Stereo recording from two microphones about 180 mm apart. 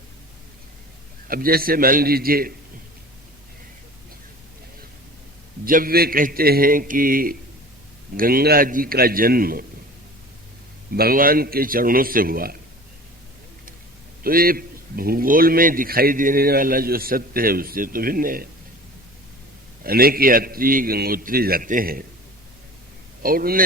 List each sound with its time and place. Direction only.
1.3 s a man's voice: 55° right (ahead or behind)
5.6 s a man's voice: 50° right (ahead or behind)
10.9 s a man's voice: 55° right (ahead or behind)
14.3 s a man's voice: 55° right (ahead or behind)
19.8 s a man's voice: 55° right (ahead or behind)
23.2 s a man's voice: 55° right (ahead or behind)